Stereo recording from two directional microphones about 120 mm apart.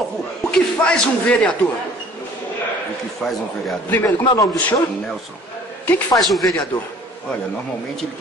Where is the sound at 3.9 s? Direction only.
20° left (ahead or behind).